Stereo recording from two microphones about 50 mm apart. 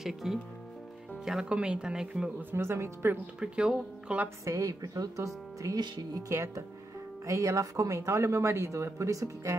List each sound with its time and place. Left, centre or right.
0.0 s speech: centre
1.5 s speech: right
2.5 s speech: right
3.3 s speech: centre
4.5 s speech: right